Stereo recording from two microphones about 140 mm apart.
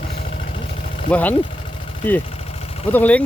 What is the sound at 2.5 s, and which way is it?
Vehicle, 45° left (ahead or behind).